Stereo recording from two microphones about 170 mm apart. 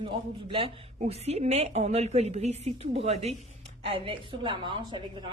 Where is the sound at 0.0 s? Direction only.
30° right (ahead or behind).